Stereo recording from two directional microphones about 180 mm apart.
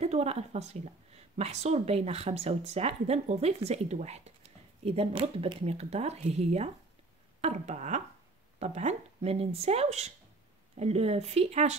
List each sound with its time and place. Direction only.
0.0 s a woman's voice: 35° right (ahead or behind)